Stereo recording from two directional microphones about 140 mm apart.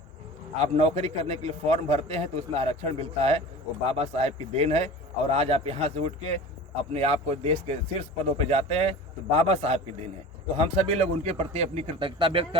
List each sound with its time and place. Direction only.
0.6 s speech: 50° right (ahead or behind)